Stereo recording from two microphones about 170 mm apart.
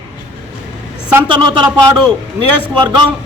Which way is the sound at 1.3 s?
25° right (ahead or behind).